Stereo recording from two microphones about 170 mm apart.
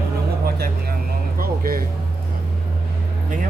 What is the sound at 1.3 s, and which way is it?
Speech, 60° right (ahead or behind).